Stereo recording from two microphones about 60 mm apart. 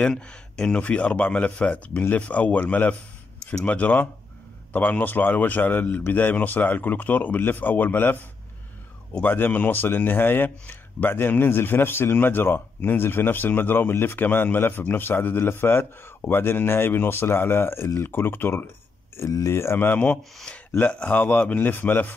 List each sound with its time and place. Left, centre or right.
0.0 s speech: centre; by 8.2 s left
9.2 s speech: left
20.5 s speech: centre